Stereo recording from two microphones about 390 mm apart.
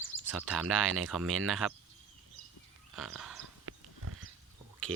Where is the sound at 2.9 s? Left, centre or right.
Centre.